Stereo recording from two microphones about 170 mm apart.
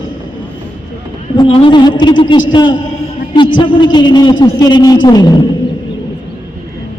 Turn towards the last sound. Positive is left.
turn(degrees=25)  # may be behind; listen again after turning